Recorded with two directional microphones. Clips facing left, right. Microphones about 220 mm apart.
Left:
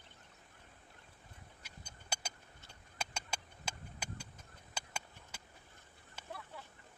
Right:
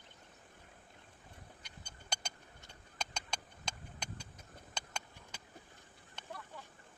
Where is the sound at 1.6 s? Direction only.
5° left (ahead or behind).